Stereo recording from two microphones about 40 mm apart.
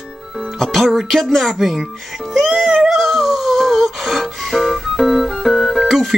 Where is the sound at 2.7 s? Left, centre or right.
Centre.